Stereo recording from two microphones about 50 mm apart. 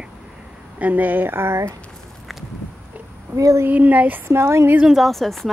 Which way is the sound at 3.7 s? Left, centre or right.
Right.